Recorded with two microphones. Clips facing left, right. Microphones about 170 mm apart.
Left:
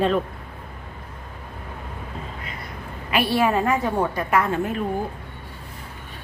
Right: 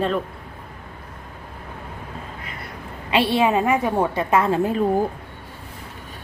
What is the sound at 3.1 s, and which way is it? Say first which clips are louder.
A woman's voice: right 2 dB; 25° right (ahead or behind).